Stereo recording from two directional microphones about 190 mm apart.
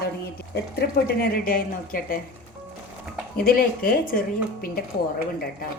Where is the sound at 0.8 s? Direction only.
60° left (ahead or behind).